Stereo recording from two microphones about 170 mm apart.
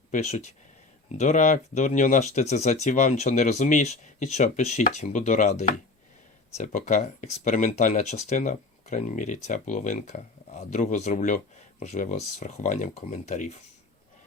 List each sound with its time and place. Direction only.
0.1 s speech: 40° left (ahead or behind)